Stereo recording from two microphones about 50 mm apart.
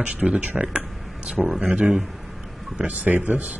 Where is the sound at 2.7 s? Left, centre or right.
Right.